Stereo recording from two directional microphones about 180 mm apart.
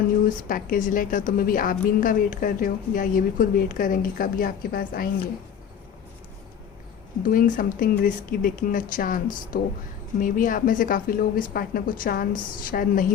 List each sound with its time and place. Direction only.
0.3 s a woman's voice: 50° left (ahead or behind)
7.2 s a woman's voice: 50° left (ahead or behind)